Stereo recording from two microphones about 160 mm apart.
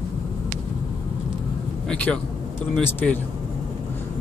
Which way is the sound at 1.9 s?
5° left (ahead or behind).